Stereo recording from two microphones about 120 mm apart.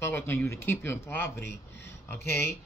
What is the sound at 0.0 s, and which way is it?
A man's voice, 20° left (ahead or behind).